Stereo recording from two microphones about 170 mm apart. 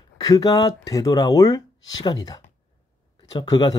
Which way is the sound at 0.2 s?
20° left (ahead or behind).